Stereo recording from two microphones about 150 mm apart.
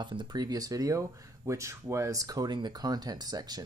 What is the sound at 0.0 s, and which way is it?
Speech, 30° right (ahead or behind).